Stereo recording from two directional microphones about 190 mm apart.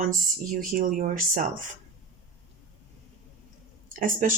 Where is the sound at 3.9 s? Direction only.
45° right (ahead or behind).